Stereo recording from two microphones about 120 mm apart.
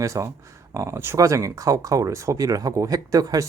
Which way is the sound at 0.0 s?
25° right (ahead or behind).